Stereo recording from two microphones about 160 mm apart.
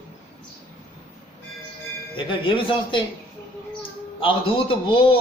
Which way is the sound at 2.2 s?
30° left (ahead or behind).